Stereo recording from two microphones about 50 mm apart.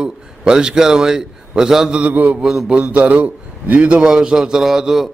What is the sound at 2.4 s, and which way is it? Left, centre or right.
Speech, centre.